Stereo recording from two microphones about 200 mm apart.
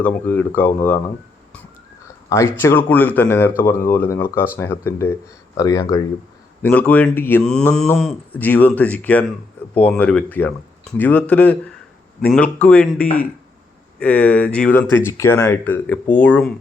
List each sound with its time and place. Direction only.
0.0 s speech: 10° left (ahead or behind)
2.3 s speech: 15° left (ahead or behind)